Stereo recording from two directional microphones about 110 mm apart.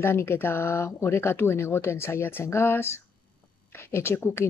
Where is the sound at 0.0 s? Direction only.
20° left (ahead or behind).